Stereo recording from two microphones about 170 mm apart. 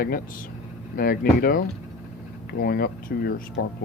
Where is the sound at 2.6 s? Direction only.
65° left (ahead or behind).